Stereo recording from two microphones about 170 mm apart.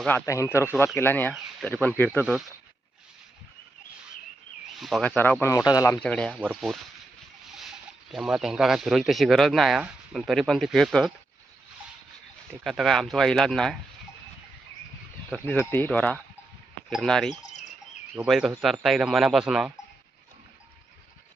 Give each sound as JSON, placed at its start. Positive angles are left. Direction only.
{"t": 0.1, "sound": "speech", "side_deg": 15}
{"t": 4.8, "sound": "speech", "side_deg": 0}
{"t": 5.1, "sound": "speech", "side_deg": 10}
{"t": 5.9, "sound": "speech", "side_deg": 5}
{"t": 8.1, "sound": "speech", "side_deg": 0}
{"t": 12.6, "sound": "speech", "side_deg": 0}
{"t": 15.3, "sound": "speech", "side_deg": 10}